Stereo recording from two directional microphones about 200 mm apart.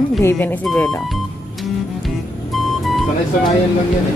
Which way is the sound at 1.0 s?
Centre (ahead or behind).